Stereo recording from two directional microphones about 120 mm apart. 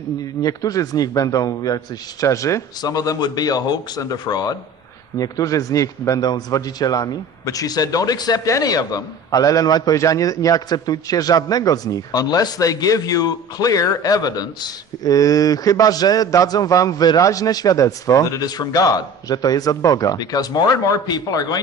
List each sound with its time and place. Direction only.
0.4 s a man's voice: 30° left (ahead or behind)